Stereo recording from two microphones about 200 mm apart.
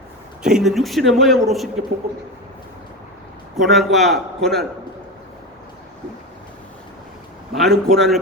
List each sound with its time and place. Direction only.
0.4 s speech: 5° right (ahead or behind)
3.5 s speech: centre (ahead or behind)
7.5 s speech: centre (ahead or behind)